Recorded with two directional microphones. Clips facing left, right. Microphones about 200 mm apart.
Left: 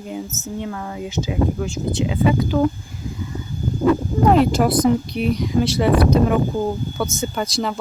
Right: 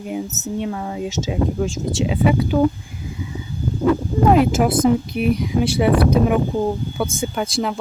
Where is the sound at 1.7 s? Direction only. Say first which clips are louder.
Even; 90° right.